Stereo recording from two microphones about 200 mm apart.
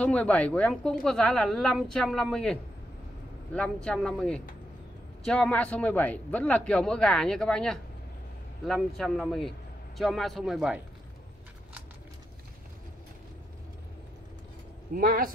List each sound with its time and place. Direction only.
0.0 s a woman's voice: 5° left (ahead or behind)
15.0 s a man's voice: 45° right (ahead or behind)